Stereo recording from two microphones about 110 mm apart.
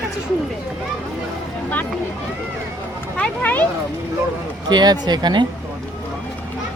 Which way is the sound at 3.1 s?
15° left (ahead or behind).